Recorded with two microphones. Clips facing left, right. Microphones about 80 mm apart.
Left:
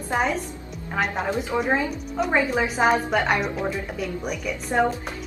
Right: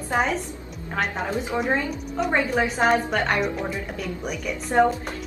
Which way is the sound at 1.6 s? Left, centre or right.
Centre.